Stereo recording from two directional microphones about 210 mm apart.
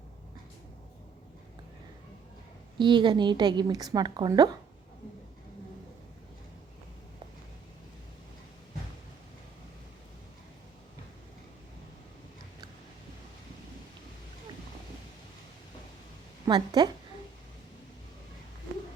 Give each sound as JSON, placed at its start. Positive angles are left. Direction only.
{"t": 2.7, "sound": "a woman's voice", "side_deg": -20}
{"t": 16.5, "sound": "a woman's voice", "side_deg": -20}